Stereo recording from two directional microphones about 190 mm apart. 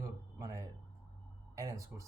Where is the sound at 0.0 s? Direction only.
15° right (ahead or behind).